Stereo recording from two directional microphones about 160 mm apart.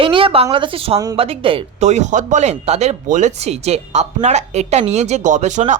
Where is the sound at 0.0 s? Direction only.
35° right (ahead or behind).